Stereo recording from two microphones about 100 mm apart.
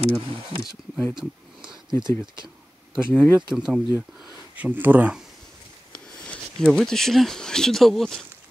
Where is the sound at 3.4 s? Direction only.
10° right (ahead or behind).